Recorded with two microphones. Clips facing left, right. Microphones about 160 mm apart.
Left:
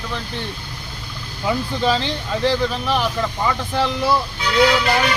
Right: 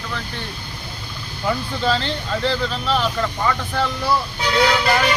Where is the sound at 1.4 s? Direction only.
15° left (ahead or behind).